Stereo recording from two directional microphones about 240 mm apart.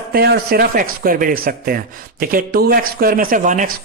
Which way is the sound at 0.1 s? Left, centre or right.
Right.